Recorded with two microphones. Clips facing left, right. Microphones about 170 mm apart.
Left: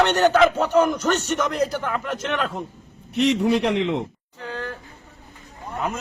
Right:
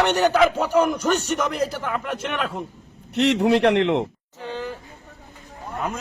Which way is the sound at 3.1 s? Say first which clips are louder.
Right 1 dB; 75° right (ahead or behind).